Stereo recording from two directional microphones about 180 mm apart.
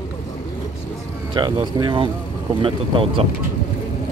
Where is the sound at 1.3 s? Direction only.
25° right (ahead or behind).